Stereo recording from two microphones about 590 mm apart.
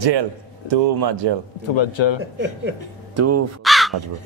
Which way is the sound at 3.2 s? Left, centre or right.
Right.